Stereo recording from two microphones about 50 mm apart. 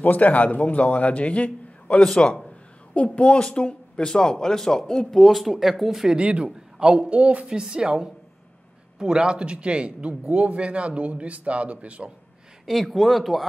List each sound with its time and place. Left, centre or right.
0.0 s a man's voice: left; by 5.2 s centre
5.2 s speech: centre
6.1 s a man's voice: right
12.6 s speech: centre